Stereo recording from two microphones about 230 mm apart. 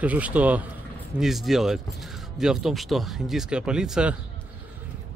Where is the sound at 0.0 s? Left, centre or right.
Centre.